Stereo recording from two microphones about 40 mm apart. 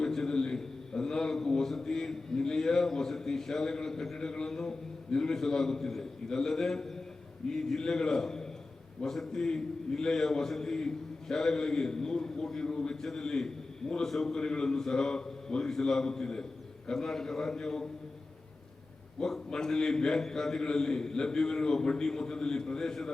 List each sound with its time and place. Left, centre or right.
0.0 s a sound: centre
4.2 s a man's voice: centre
19.2 s a man's voice: centre